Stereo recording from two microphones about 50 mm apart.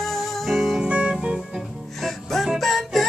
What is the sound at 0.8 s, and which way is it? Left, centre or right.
Music, right.